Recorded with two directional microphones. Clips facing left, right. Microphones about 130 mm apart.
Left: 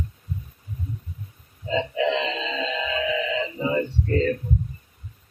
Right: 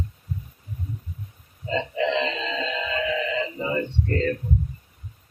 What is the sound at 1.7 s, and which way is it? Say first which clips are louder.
Music: left 1 dB; centre (ahead or behind).